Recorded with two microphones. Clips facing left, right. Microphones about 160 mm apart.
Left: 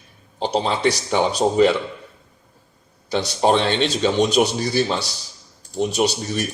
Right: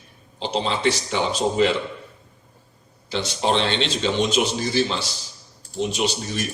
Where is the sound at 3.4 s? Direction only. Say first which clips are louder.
Left 4 dB; 45° left (ahead or behind).